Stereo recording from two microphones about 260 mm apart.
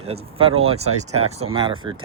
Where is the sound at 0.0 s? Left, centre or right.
Right.